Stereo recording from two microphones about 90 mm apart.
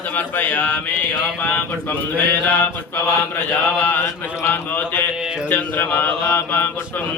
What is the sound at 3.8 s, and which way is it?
Speech, 20° left (ahead or behind).